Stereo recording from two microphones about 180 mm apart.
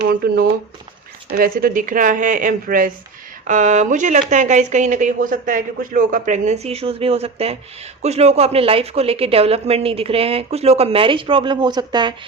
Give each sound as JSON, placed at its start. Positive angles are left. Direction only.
{"t": 0.2, "sound": "a woman's voice", "side_deg": -60}